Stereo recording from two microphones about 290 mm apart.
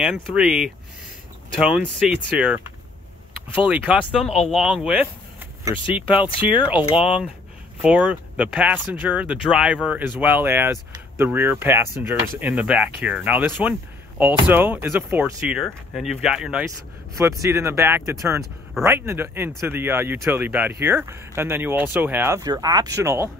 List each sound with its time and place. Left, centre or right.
0.0 s speech: centre
3.6 s speech: centre
6.0 s speech: centre
6.7 s speech: centre